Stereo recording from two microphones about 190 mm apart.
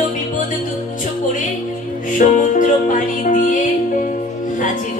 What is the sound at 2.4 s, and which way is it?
Music, 40° left (ahead or behind).